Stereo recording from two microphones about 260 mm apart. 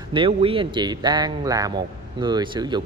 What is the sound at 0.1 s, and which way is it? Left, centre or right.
Speech, centre.